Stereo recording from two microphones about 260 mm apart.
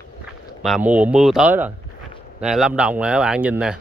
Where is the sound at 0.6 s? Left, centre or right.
Centre.